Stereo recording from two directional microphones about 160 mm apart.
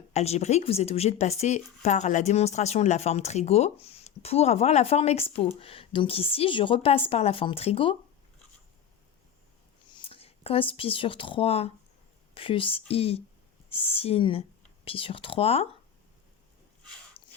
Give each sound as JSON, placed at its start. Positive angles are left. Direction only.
{"t": 0.1, "sound": "a woman's voice", "side_deg": 45}
{"t": 9.9, "sound": "a woman's voice", "side_deg": 35}